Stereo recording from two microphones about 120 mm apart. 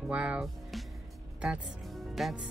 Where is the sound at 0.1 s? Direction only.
10° right (ahead or behind).